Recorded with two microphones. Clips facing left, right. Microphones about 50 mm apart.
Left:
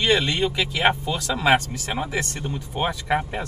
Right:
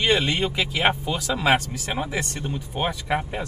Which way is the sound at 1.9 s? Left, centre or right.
Centre.